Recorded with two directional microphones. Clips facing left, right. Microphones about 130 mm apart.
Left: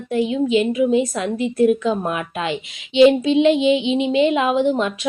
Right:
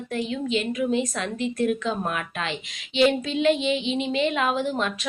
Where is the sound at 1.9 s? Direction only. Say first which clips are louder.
Left 6 dB; 15° left (ahead or behind).